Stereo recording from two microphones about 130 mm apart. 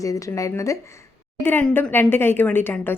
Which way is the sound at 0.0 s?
25° left (ahead or behind).